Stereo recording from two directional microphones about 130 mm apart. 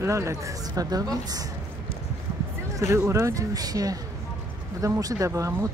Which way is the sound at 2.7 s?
20° right (ahead or behind).